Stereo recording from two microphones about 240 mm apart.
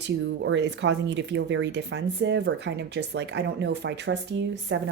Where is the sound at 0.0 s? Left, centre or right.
Right.